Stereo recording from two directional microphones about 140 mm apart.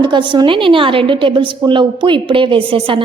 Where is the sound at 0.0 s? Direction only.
35° right (ahead or behind).